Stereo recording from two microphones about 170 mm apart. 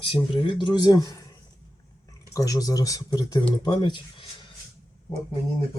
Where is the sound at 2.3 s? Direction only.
20° left (ahead or behind).